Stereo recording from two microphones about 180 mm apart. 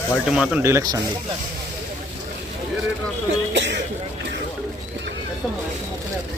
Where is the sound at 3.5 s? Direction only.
80° right.